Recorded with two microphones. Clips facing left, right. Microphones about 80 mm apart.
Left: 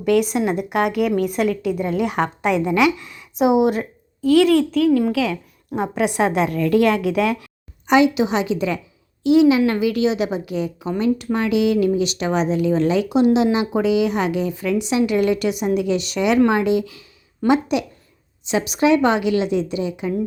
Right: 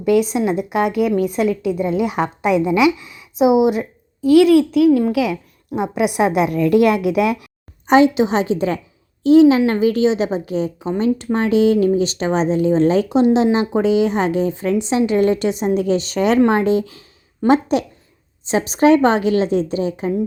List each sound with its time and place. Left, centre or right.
0.0 s a woman's voice: centre
7.9 s a woman's voice: right